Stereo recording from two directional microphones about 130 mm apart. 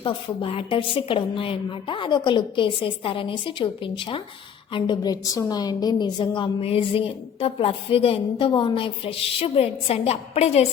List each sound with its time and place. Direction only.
0.0 s a woman's voice: 45° left (ahead or behind)